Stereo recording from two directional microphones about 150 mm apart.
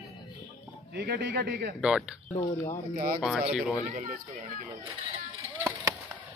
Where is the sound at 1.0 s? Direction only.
90° right.